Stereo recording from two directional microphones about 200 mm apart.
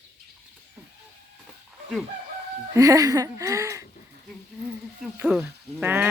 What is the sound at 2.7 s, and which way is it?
Speech, 15° right (ahead or behind).